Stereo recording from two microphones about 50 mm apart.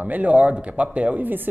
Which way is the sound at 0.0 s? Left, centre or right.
Right.